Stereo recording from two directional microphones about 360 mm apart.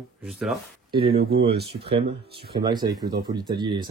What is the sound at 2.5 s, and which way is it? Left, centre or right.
Speech, centre.